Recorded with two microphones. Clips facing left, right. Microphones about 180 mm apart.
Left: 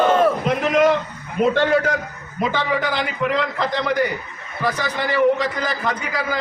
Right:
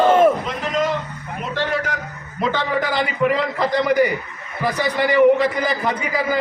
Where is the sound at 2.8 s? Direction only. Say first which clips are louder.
Right 3 dB; 5° right (ahead or behind).